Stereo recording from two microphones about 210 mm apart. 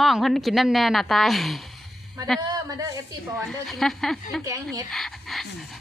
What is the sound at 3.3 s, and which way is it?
Speech, centre (ahead or behind).